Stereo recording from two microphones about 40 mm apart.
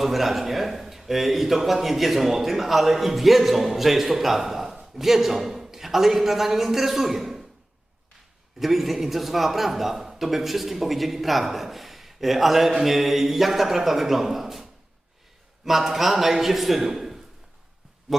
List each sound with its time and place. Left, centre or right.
0.0 s speech: centre
8.5 s speech: centre